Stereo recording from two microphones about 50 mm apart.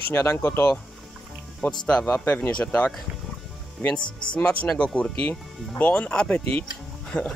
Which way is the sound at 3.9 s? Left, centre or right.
Left.